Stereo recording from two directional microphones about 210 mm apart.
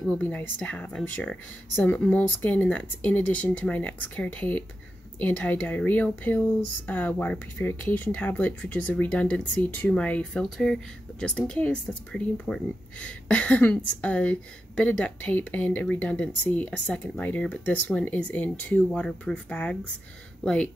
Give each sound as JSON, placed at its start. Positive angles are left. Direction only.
{"t": 0.0, "sound": "speech", "side_deg": 5}